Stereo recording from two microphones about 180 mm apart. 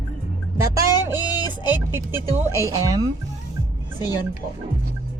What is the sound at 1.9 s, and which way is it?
A man's voice, 15° right (ahead or behind).